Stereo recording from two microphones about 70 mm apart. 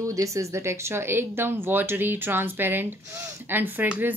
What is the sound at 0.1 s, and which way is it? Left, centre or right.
Speech, right.